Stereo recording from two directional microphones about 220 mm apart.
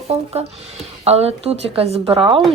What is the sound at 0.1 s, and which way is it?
Speech, 30° right (ahead or behind).